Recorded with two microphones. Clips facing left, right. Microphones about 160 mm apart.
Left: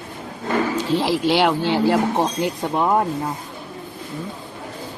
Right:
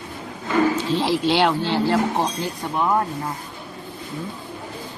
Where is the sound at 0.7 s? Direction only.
10° left (ahead or behind).